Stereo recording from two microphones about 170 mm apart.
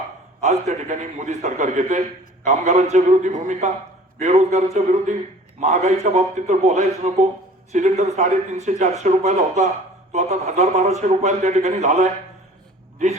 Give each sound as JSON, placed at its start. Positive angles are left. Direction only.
{"t": 0.4, "sound": "speech", "side_deg": -45}